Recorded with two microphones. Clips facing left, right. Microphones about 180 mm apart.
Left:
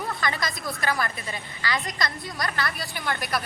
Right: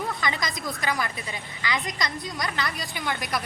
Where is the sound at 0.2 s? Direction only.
20° right (ahead or behind).